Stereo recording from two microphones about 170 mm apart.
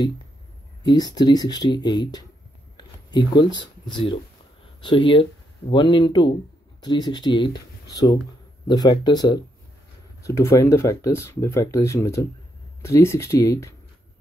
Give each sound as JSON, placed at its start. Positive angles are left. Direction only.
{"t": 0.8, "sound": "speech", "side_deg": 25}